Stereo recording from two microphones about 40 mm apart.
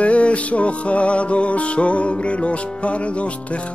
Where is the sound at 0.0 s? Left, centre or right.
Left.